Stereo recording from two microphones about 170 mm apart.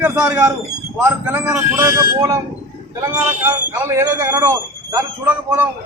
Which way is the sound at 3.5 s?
15° right (ahead or behind).